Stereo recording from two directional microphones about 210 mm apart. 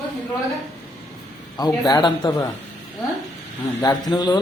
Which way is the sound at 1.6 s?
20° left (ahead or behind).